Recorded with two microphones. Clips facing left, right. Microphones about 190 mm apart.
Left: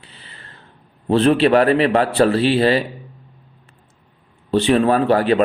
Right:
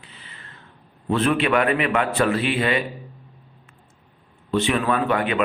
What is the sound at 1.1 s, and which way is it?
A man's voice, 35° left (ahead or behind).